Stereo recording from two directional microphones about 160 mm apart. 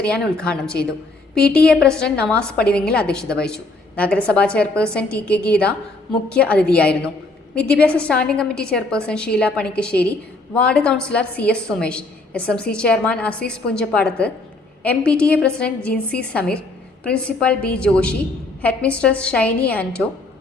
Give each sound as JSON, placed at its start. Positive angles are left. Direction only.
{"t": 0.4, "sound": "a woman's voice", "side_deg": 5}